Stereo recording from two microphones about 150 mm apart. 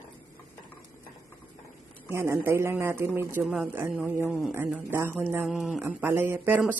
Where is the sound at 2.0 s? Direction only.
15° right (ahead or behind).